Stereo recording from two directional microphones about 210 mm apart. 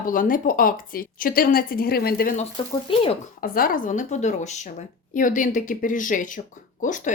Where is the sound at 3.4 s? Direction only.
45° left (ahead or behind).